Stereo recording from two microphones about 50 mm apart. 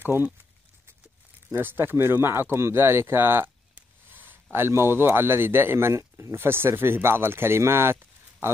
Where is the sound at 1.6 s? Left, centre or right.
Right.